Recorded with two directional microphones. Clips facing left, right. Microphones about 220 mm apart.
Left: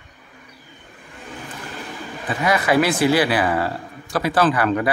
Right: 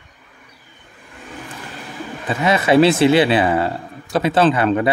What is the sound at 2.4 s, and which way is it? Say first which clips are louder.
A man's voice: right 5 dB; 25° right (ahead or behind).